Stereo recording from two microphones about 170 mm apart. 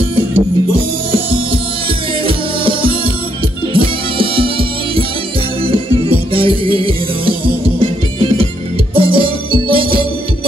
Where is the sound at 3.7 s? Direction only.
30° right (ahead or behind).